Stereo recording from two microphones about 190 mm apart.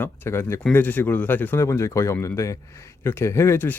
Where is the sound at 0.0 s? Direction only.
10° left (ahead or behind).